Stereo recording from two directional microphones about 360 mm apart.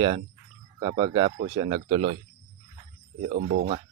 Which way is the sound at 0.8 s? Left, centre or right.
Centre.